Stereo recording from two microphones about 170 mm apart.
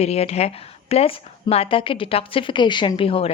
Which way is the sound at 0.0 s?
40° left (ahead or behind).